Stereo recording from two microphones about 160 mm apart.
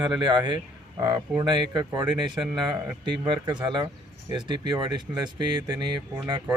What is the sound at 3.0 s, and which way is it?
Speech, 30° right (ahead or behind).